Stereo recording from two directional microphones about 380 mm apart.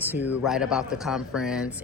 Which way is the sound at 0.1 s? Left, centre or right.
Centre.